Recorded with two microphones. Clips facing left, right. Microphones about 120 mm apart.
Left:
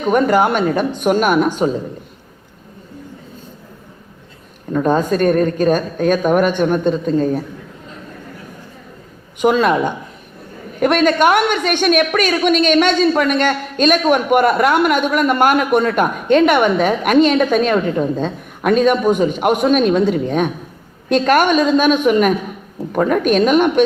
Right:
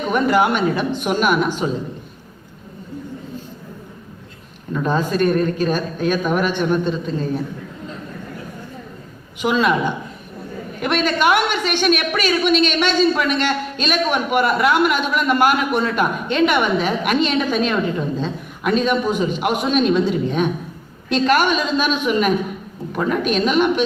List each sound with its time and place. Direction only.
0.1 s a woman's voice: 45° left (ahead or behind)
4.7 s a woman's voice: 45° left (ahead or behind)
9.4 s a woman's voice: 45° left (ahead or behind)